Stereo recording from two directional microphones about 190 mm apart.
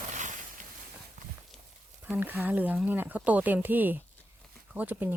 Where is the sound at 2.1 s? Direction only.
10° right (ahead or behind).